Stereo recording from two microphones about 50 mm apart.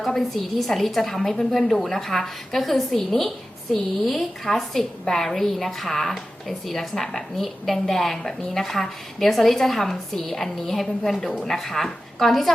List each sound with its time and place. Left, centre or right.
0.0 s a woman's voice: centre